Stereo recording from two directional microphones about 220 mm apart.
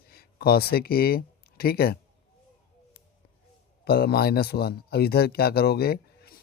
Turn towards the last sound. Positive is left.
turn(degrees=45)  # may be behind; listen again after turning